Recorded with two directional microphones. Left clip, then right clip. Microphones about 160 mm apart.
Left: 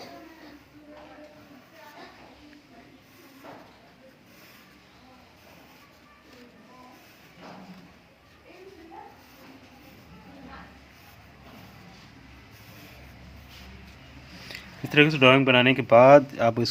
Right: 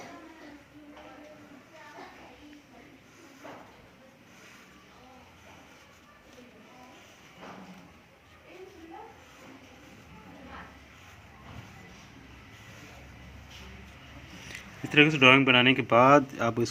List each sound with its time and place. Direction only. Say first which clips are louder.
14.9 s speech: left 2 dB; 45° left (ahead or behind)
15.3 s speech: left 1 dB; 35° left (ahead or behind)
16.3 s speech: left 5 dB; 45° left (ahead or behind)